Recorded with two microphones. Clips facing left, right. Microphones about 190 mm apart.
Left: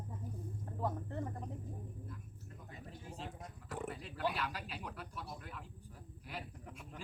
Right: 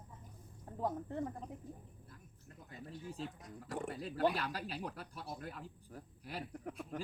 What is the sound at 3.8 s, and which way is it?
Speech, 40° right (ahead or behind).